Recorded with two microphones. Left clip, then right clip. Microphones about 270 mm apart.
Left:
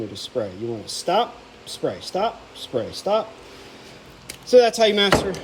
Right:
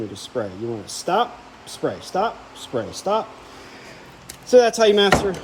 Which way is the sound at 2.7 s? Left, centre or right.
Centre.